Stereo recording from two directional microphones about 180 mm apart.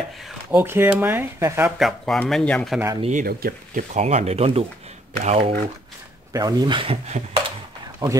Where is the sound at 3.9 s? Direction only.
35° right (ahead or behind).